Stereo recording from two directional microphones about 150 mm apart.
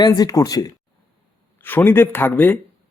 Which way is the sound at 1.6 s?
15° left (ahead or behind).